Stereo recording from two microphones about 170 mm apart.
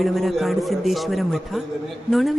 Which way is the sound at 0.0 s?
Centre (ahead or behind).